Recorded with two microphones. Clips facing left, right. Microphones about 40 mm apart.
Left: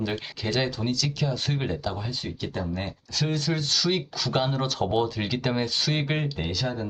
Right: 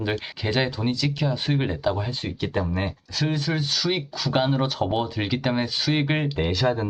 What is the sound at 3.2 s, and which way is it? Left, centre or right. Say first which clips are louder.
Speech: right 2 dB; centre.